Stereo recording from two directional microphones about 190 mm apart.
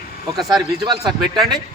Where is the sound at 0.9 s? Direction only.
20° right (ahead or behind).